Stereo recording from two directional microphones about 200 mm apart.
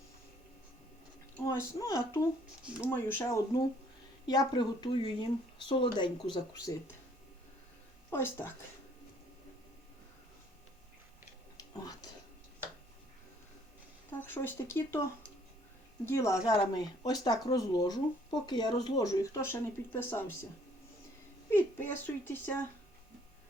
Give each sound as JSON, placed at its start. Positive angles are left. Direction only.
{"t": 1.5, "sound": "speech", "side_deg": 15}
{"t": 2.6, "sound": "speech", "side_deg": -5}
{"t": 2.9, "sound": "speech", "side_deg": 10}
{"t": 8.1, "sound": "speech", "side_deg": 10}
{"t": 14.1, "sound": "speech", "side_deg": 10}
{"t": 16.0, "sound": "speech", "side_deg": 15}
{"t": 21.5, "sound": "speech", "side_deg": 10}